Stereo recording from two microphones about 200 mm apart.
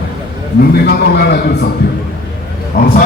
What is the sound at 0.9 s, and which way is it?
Speech, 55° left (ahead or behind).